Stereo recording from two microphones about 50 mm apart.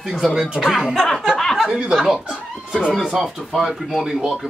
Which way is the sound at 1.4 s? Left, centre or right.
Centre.